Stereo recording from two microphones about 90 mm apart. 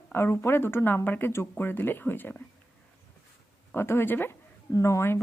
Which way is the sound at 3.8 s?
25° left (ahead or behind).